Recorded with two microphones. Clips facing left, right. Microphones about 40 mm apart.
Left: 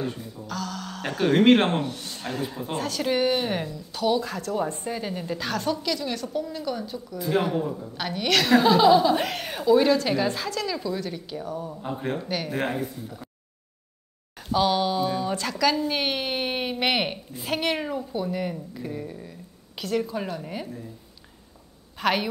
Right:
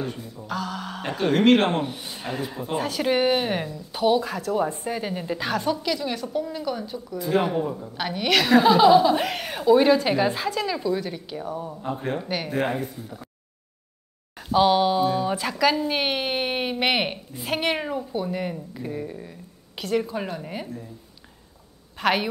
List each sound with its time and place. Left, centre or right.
0.0 s music: centre
0.5 s speech: centre
1.8 s a woman's voice: centre
4.2 s a woman's voice: centre
14.5 s a woman's voice: centre
22.0 s a woman's voice: centre